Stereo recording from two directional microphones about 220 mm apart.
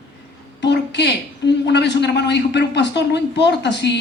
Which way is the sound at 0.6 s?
50° left (ahead or behind).